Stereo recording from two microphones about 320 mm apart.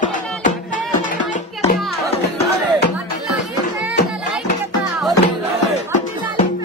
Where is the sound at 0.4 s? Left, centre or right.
Left.